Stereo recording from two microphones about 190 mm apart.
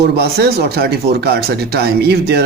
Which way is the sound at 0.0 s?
60° right (ahead or behind).